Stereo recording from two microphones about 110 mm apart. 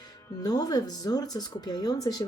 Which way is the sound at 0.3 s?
35° left (ahead or behind).